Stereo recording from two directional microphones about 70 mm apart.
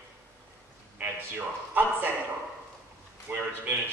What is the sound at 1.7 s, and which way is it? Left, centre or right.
Speech, right.